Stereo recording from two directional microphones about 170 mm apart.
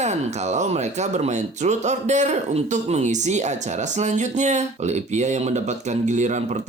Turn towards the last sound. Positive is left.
turn(degrees=-45)  # may be behind; listen again after turning